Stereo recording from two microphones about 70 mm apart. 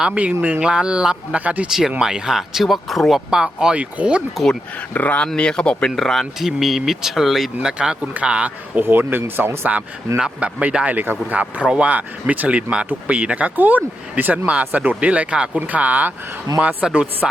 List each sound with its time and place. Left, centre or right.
0.0 s speech: centre
3.2 s speech: centre
4.9 s speech: left; by 7.7 s centre
7.7 s speech: centre; by 9.7 s right
10.2 s speech: centre